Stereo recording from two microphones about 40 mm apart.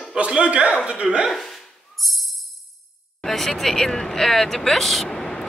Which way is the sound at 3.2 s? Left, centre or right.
Centre.